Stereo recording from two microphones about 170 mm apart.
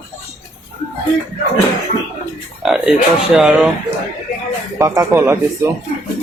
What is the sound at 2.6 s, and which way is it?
A man's voice, 5° right (ahead or behind).